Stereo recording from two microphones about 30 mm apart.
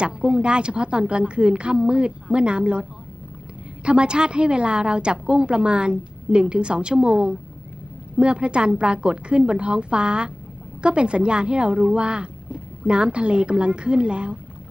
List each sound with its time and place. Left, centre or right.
0.0 s a woman's voice: right
3.8 s a woman's voice: right